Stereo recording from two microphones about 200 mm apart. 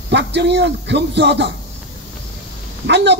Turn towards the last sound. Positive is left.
turn(degrees=-60)  # may be behind; listen again after turning